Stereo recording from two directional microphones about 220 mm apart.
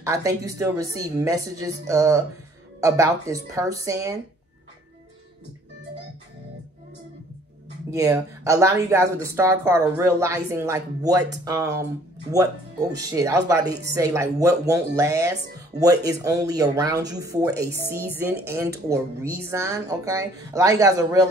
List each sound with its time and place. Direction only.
0.0 s speech: 15° right (ahead or behind)
7.9 s speech: 15° right (ahead or behind)